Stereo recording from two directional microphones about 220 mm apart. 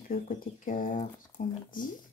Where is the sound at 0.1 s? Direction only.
35° left (ahead or behind).